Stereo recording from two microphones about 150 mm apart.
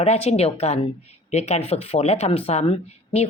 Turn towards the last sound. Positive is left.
turn(degrees=40)  # may be behind; listen again after turning